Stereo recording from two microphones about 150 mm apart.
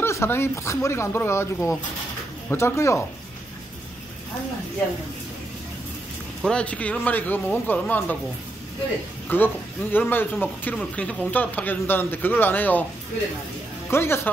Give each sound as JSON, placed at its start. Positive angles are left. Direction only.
{"t": 0.0, "sound": "speech", "side_deg": 15}
{"t": 6.4, "sound": "speech", "side_deg": 5}
{"t": 9.3, "sound": "speech", "side_deg": 15}
{"t": 13.8, "sound": "speech", "side_deg": 15}